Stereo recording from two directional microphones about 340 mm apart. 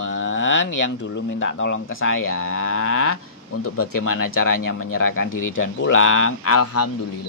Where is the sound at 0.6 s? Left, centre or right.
Left.